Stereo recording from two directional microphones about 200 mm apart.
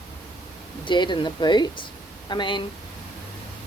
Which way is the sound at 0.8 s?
25° left (ahead or behind).